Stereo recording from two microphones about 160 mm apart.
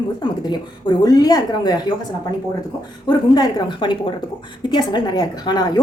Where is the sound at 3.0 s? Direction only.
25° left (ahead or behind).